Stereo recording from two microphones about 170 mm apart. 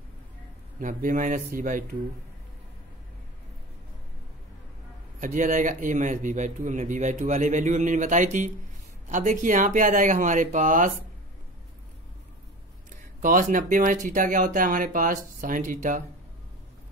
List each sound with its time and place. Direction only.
0.7 s speech: 50° right (ahead or behind)
5.2 s speech: 50° right (ahead or behind)
12.9 s speech: 50° right (ahead or behind)